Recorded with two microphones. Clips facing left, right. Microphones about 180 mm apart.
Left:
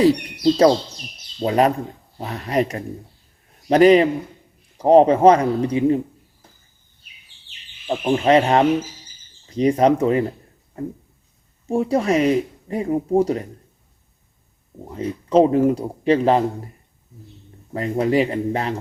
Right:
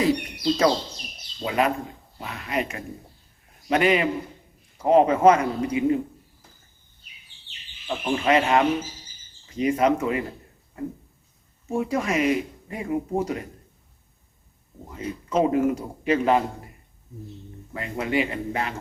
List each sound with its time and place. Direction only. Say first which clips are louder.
1.4 s speech: left 6 dB; 40° left (ahead or behind)
7.9 s speech: left 6 dB; 30° left (ahead or behind)
11.7 s speech: left 6 dB; 35° left (ahead or behind)
14.8 s speech: left 6 dB; 30° left (ahead or behind)
17.7 s speech: left 8 dB; 35° left (ahead or behind)